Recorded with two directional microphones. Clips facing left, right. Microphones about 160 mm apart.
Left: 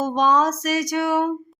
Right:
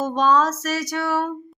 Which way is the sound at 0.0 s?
15° left (ahead or behind).